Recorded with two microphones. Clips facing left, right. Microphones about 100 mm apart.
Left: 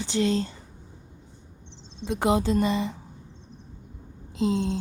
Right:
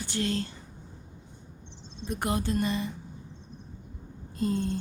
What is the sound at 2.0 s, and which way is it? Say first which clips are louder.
Speech: left 6 dB; 90° left.